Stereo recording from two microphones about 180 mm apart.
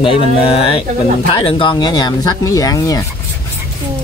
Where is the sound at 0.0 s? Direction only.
30° left (ahead or behind).